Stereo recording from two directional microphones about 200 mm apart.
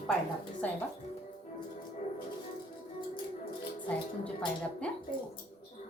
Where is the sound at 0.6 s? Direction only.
5° left (ahead or behind).